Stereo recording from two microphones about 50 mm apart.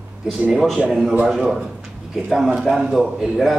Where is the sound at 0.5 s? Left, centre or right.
Centre.